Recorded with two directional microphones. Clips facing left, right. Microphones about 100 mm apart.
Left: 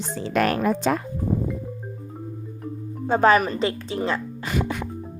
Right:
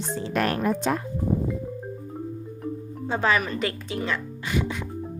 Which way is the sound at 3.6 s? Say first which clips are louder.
Left 4 dB; 30° left (ahead or behind).